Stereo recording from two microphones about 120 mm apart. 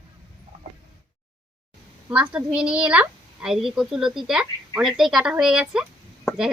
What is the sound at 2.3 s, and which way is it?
A woman's voice, 5° right (ahead or behind).